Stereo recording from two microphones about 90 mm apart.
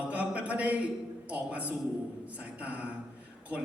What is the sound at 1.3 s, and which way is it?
A man's voice, 15° right (ahead or behind).